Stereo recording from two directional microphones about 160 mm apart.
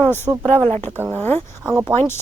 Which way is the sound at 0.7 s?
40° right (ahead or behind).